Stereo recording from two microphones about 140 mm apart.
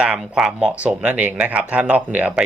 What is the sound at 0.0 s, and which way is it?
Speech, 5° right (ahead or behind).